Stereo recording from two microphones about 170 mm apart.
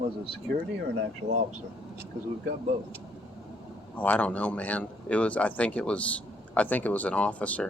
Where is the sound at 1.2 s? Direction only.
40° right (ahead or behind).